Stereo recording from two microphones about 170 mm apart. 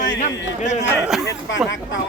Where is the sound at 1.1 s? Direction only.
Centre (ahead or behind).